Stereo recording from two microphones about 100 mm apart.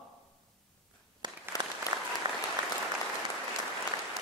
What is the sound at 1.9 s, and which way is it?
Applause, 45° right (ahead or behind).